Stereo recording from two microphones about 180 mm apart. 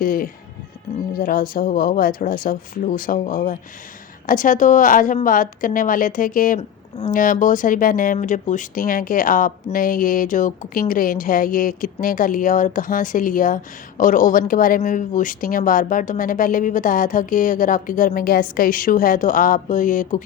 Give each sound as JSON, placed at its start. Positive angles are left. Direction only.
{"t": 0.0, "sound": "speech", "side_deg": 50}